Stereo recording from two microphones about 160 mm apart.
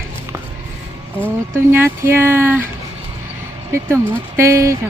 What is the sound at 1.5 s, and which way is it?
Speech, 15° right (ahead or behind).